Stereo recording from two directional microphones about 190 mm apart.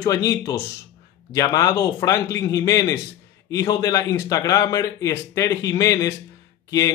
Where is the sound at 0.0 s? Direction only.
20° left (ahead or behind).